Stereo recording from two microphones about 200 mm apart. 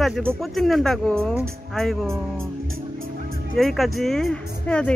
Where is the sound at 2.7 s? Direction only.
45° right (ahead or behind).